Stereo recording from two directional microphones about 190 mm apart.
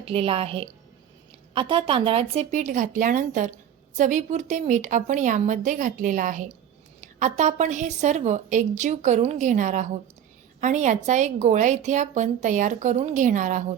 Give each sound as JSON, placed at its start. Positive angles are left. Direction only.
{"t": 0.0, "sound": "a woman's voice", "side_deg": -30}